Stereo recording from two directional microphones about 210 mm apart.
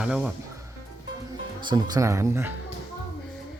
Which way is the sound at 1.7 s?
20° right (ahead or behind).